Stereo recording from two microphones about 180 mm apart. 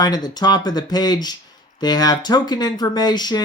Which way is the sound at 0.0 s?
20° left (ahead or behind).